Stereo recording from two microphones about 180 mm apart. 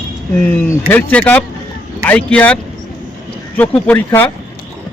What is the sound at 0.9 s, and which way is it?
Speech, 10° left (ahead or behind).